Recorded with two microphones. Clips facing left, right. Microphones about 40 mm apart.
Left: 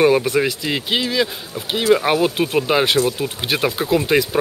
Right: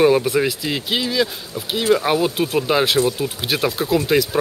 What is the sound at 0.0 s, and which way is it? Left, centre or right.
Speech, centre.